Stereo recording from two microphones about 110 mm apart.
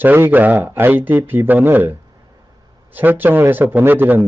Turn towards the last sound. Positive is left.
turn(degrees=-15)  # may be behind; listen again after turning